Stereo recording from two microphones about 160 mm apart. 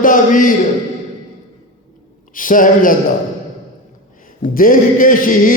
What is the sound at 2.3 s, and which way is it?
Speech, 55° left (ahead or behind).